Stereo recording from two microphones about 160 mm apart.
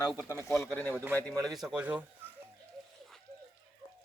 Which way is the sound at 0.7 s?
10° left (ahead or behind).